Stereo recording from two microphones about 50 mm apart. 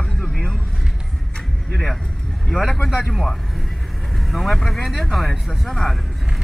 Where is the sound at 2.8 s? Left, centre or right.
Centre.